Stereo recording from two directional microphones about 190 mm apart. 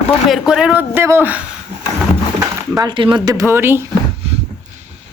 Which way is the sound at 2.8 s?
25° right (ahead or behind).